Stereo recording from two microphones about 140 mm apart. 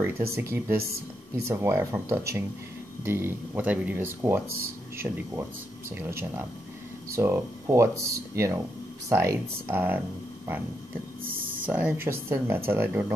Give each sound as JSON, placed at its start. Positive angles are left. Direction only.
{"t": 0.3, "sound": "speech", "side_deg": -20}
{"t": 11.2, "sound": "a sound", "side_deg": -90}
{"t": 11.6, "sound": "speech", "side_deg": -10}